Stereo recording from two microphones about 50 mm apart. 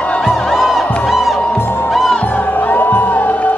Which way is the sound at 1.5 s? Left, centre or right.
Left.